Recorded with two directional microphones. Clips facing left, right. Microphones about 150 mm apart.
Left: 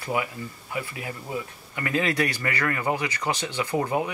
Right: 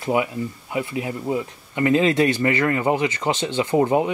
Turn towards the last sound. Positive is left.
turn(degrees=-25)  # may be behind; listen again after turning